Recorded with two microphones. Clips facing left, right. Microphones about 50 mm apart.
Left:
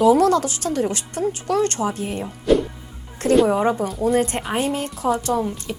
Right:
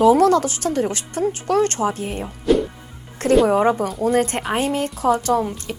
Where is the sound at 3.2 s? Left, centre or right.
Right.